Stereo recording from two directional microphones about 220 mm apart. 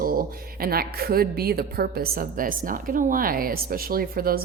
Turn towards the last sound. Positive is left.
turn(degrees=-40)  # may be behind; listen again after turning